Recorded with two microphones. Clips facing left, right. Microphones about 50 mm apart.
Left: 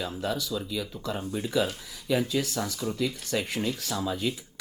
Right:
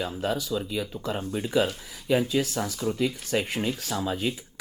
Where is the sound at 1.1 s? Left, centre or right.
Centre.